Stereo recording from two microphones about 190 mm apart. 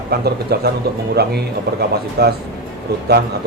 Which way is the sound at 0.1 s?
55° right (ahead or behind).